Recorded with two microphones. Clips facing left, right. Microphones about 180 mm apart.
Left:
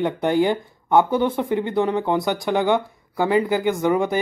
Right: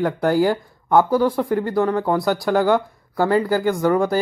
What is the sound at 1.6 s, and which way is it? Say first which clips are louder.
Speech: right 1 dB; 20° left (ahead or behind).